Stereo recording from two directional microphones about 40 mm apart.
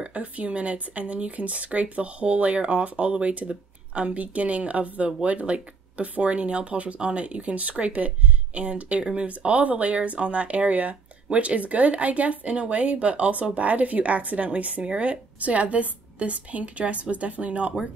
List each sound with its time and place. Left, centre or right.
0.0 s speech: right